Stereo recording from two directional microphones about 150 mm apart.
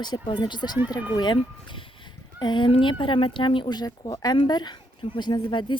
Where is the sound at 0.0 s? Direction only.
30° left (ahead or behind).